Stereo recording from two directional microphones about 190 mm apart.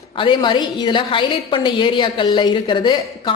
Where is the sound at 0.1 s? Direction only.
25° left (ahead or behind).